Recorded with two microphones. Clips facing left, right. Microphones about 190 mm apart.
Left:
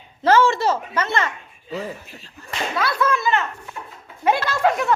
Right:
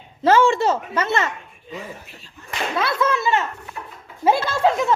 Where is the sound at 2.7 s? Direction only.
25° right (ahead or behind).